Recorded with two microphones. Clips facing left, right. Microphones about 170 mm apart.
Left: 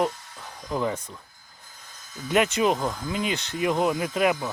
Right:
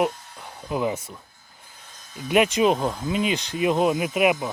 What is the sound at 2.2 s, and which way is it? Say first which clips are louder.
Speech: right 3 dB; 15° right (ahead or behind).